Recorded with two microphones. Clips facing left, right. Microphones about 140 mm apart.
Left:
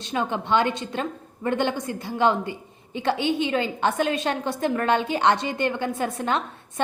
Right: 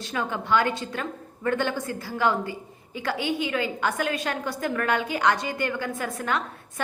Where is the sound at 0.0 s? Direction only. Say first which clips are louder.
Left 3 dB; 25° left (ahead or behind).